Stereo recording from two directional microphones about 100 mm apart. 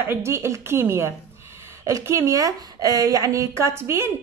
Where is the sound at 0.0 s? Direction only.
25° right (ahead or behind).